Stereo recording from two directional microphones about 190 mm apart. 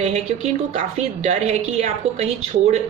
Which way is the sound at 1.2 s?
35° right (ahead or behind).